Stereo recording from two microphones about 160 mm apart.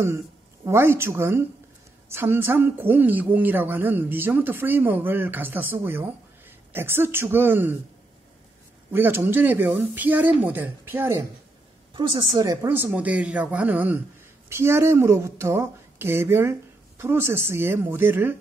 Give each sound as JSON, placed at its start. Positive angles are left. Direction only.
{"t": 0.7, "sound": "a woman's voice", "side_deg": -15}
{"t": 8.9, "sound": "a woman's voice", "side_deg": -15}
{"t": 11.9, "sound": "a woman's voice", "side_deg": -30}
{"t": 12.6, "sound": "a woman's voice", "side_deg": -15}